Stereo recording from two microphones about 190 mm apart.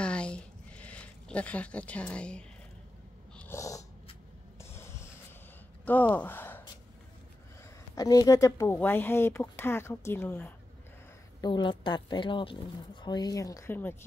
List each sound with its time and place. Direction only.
0.0 s a sound: 5° left (ahead or behind)
3.3 s snort: 15° left (ahead or behind)
4.6 s a sound: 15° left (ahead or behind)
5.9 s speech: 10° left (ahead or behind)
7.9 s speech: 20° left (ahead or behind)
11.4 s speech: 25° left (ahead or behind)